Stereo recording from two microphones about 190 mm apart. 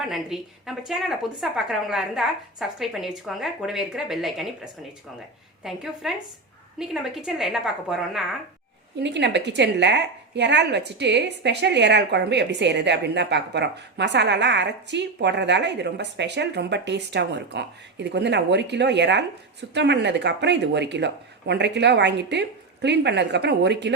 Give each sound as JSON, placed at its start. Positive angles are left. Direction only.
{"t": 0.0, "sound": "a woman's voice", "side_deg": 0}
{"t": 9.0, "sound": "a woman's voice", "side_deg": -65}